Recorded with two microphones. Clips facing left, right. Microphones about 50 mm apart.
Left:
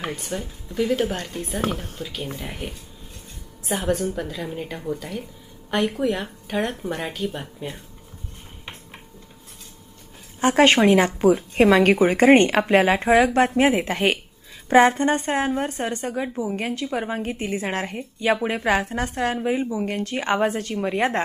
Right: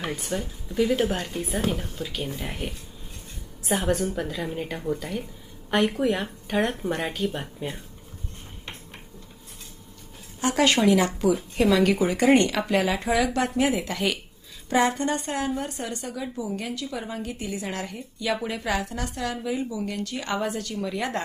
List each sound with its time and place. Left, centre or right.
0.2 s speech: centre
10.4 s a woman's voice: left